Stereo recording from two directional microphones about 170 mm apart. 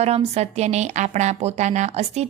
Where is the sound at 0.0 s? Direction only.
40° right (ahead or behind).